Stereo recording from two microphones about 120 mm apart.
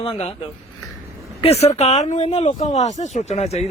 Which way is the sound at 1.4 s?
60° left (ahead or behind).